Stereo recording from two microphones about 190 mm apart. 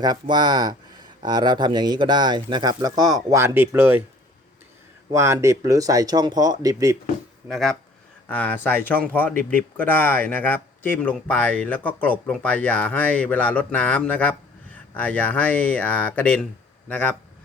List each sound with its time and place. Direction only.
0.0 s speech: 20° right (ahead or behind)
5.1 s speech: 15° right (ahead or behind)
7.4 s speech: centre (ahead or behind)